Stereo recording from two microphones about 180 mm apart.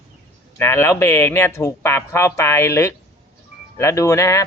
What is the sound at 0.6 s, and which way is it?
Speech, 15° left (ahead or behind).